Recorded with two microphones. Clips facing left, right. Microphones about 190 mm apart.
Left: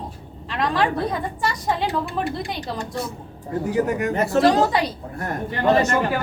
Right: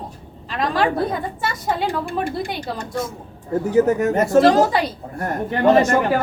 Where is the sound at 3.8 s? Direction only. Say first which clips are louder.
Right 6 dB; 45° right (ahead or behind).